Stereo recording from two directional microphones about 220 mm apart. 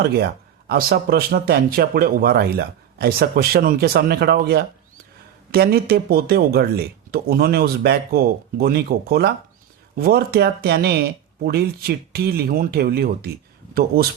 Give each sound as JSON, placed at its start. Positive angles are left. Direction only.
{"t": 0.0, "sound": "speech", "side_deg": -45}